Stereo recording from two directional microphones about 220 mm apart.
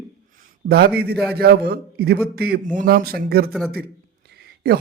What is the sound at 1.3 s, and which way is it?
Speech, 45° right (ahead or behind).